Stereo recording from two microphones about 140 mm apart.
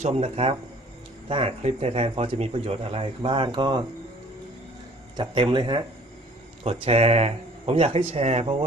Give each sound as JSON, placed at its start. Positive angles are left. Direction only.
{"t": 0.0, "sound": "speech", "side_deg": -50}
{"t": 5.1, "sound": "speech", "side_deg": -35}
{"t": 6.7, "sound": "speech", "side_deg": -45}